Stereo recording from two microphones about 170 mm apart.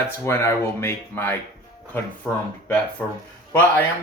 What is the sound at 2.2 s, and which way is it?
Speech, centre (ahead or behind).